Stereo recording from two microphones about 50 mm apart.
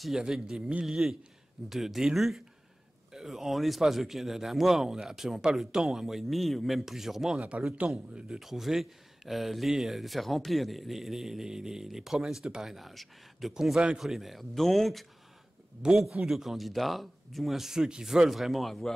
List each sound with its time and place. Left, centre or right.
0.2 s speech: centre
0.8 s speech: centre
7.8 s speech: right
8.3 s speech: centre
13.5 s speech: centre
13.9 s speech: centre